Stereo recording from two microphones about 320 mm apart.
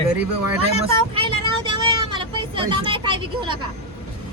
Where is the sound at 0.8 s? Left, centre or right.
Centre.